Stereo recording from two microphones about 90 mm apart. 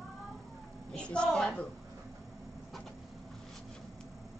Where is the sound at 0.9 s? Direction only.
10° left (ahead or behind).